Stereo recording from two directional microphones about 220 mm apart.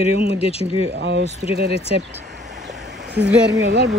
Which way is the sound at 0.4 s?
25° left (ahead or behind).